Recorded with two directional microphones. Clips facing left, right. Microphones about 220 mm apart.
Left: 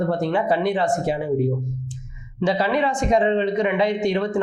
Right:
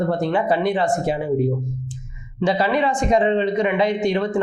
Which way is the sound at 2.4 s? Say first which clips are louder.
Right 1 dB; 20° right (ahead or behind).